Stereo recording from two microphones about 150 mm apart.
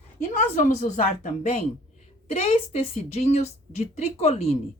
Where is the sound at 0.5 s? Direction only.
55° left (ahead or behind).